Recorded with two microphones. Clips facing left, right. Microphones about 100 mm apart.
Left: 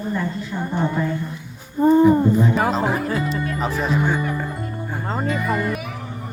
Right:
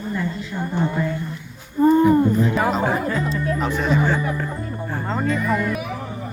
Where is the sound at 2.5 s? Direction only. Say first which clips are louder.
Even; centre (ahead or behind).